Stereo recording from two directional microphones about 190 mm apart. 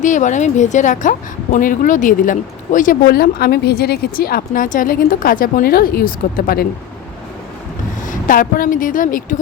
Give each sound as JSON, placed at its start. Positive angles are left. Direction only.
{"t": 0.0, "sound": "speech", "side_deg": 40}
{"t": 8.0, "sound": "speech", "side_deg": 45}